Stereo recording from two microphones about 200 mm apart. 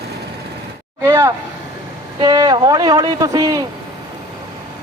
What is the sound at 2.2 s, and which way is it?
Speech, 20° right (ahead or behind).